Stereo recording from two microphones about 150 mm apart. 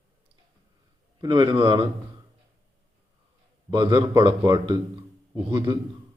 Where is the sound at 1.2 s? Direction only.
30° right (ahead or behind).